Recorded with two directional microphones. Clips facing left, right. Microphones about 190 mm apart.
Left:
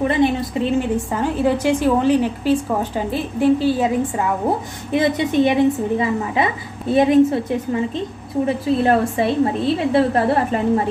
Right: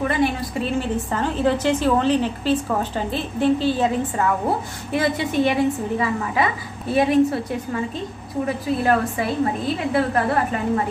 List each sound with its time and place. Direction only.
0.0 s a woman's voice: 25° left (ahead or behind)